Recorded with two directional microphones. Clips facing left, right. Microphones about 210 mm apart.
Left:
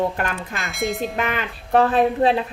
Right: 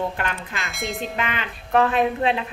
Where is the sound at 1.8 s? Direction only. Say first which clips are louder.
Left 3 dB; 35° left (ahead or behind).